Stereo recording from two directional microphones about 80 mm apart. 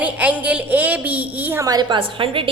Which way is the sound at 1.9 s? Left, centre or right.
Right.